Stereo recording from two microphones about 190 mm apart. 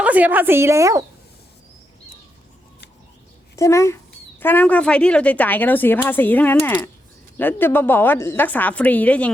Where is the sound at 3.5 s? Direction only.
15° left (ahead or behind).